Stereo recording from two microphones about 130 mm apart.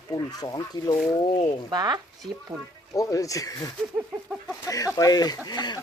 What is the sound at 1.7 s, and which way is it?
Speech, 30° right (ahead or behind).